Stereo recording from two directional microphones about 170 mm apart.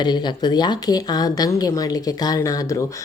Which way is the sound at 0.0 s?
25° left (ahead or behind).